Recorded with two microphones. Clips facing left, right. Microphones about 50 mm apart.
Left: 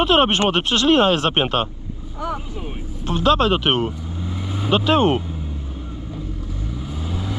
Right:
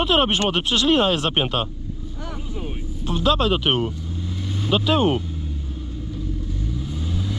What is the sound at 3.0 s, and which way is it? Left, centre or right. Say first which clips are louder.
Speech: left 3 dB; centre.